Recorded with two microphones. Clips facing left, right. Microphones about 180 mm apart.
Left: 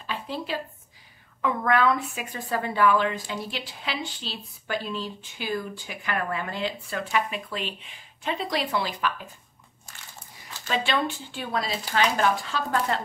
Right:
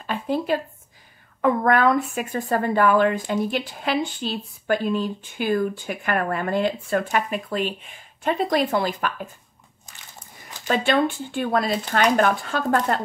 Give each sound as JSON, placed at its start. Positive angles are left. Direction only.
{"t": 0.0, "sound": "a sound", "side_deg": -50}
{"t": 1.4, "sound": "speech", "side_deg": -50}
{"t": 10.7, "sound": "speech", "side_deg": -50}